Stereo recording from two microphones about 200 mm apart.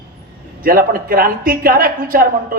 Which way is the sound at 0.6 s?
45° right (ahead or behind).